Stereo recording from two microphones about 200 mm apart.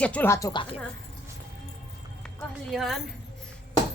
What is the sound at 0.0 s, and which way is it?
Speech, 10° left (ahead or behind).